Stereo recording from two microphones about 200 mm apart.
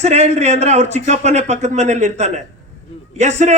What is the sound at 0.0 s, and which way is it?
A man's voice, 35° right (ahead or behind).